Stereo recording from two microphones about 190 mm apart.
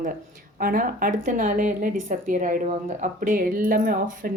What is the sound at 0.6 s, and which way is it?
Speech, 50° right (ahead or behind).